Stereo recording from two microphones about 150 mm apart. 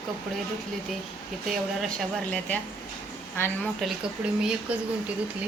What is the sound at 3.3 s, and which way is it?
Speech, 15° left (ahead or behind).